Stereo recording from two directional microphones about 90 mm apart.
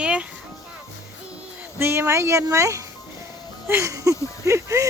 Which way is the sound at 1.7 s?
30° right (ahead or behind).